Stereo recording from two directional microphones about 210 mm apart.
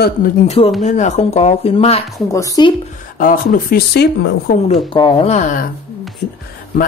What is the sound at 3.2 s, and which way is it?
Speech, 40° left (ahead or behind).